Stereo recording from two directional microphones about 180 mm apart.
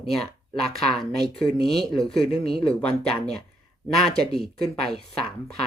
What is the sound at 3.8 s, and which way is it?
Speech, centre (ahead or behind).